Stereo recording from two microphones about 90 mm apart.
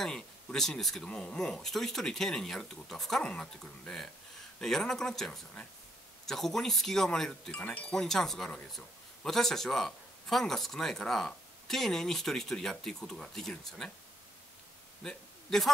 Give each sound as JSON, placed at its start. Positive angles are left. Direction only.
{"t": 0.0, "sound": "speech", "side_deg": 5}
{"t": 15.0, "sound": "a man's voice", "side_deg": 5}